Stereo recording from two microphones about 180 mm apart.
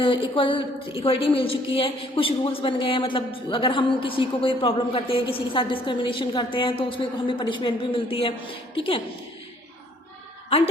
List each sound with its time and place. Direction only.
0.0 s a woman's voice: 30° left (ahead or behind)